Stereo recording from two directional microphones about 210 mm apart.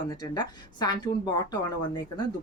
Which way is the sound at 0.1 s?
20° left (ahead or behind).